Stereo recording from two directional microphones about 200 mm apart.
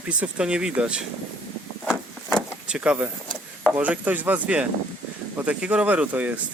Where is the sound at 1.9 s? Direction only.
5° right (ahead or behind).